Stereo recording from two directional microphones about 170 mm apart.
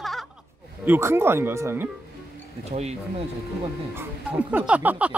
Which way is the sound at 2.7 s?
40° right (ahead or behind).